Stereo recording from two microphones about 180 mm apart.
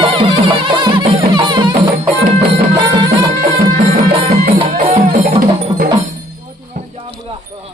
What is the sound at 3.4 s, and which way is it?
Music, 45° right (ahead or behind).